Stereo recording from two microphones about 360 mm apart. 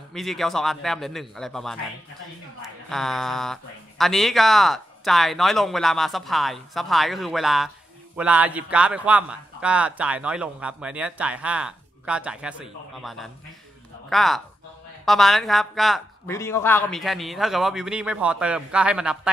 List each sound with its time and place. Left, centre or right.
0.1 s a man's voice: centre